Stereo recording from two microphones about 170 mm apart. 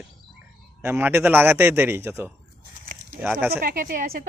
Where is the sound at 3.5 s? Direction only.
60° right (ahead or behind).